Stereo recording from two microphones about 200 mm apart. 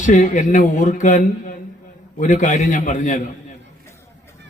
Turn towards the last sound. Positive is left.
turn(degrees=40)  # may be behind; listen again after turning